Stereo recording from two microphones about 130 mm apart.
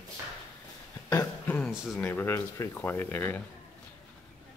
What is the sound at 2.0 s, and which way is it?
Speech, 15° left (ahead or behind).